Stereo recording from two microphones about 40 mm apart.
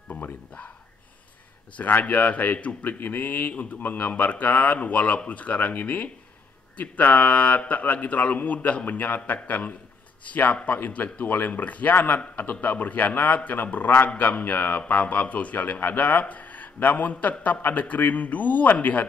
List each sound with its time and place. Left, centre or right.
1.8 s a man's voice: left
12.2 s a man's voice: left
17.6 s a man's voice: left